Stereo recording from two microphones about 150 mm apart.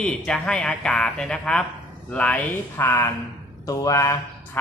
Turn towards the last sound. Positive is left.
turn(degrees=20)  # may be behind; listen again after turning